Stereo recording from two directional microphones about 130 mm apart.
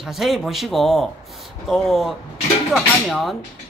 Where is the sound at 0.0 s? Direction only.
Centre (ahead or behind).